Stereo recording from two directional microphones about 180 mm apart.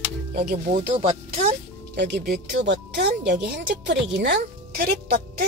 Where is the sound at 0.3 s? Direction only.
60° right (ahead or behind).